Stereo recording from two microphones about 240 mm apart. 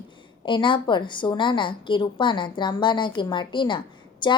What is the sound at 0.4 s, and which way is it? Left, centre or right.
A woman's voice, centre.